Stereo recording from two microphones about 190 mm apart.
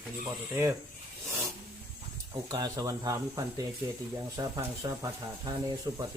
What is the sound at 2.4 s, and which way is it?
Speech, 20° right (ahead or behind).